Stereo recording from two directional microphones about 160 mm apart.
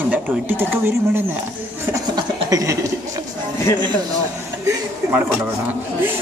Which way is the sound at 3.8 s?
30° right (ahead or behind).